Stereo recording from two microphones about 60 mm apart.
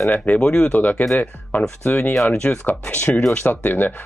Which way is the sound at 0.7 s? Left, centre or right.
Left.